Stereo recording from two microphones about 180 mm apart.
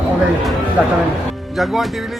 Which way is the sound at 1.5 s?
Centre (ahead or behind).